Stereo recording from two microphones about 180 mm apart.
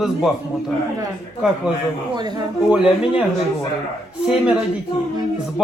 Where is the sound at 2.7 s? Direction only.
5° right (ahead or behind).